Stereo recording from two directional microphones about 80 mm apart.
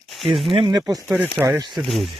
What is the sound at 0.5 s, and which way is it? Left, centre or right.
Speech, right.